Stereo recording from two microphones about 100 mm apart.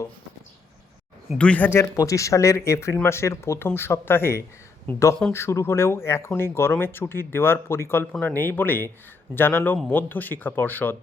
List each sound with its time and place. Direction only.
1.4 s speech: 15° left (ahead or behind)
1.8 s speech: 30° left (ahead or behind)